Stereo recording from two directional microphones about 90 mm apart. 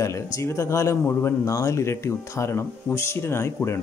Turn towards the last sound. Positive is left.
turn(degrees=30)  # may be behind; listen again after turning